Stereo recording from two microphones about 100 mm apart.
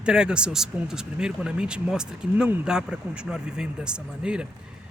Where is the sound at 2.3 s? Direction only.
20° right (ahead or behind).